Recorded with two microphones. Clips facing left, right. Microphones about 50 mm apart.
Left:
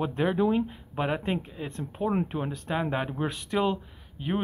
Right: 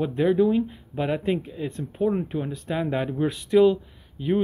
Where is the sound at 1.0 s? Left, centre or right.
Left.